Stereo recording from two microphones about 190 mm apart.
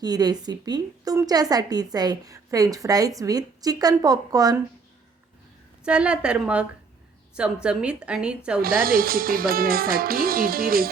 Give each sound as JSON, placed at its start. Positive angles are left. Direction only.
{"t": 0.0, "sound": "a woman's voice", "side_deg": -20}
{"t": 5.8, "sound": "a woman's voice", "side_deg": -5}
{"t": 8.6, "sound": "speech", "side_deg": -50}